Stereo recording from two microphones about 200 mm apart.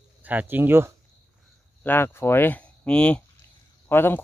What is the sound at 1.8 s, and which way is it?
Speech, 10° left (ahead or behind).